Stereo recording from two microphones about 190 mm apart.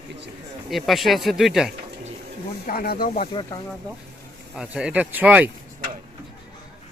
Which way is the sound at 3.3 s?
20° left (ahead or behind).